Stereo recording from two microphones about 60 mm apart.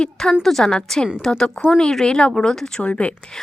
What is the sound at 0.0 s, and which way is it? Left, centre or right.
A woman's voice, centre.